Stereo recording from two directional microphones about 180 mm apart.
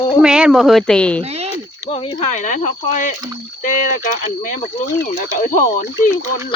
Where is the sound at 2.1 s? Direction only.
45° left (ahead or behind).